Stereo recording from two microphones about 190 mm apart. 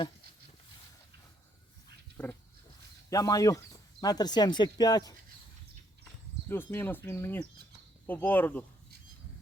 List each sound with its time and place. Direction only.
2.2 s speech: 10° left (ahead or behind)
6.5 s speech: 10° left (ahead or behind)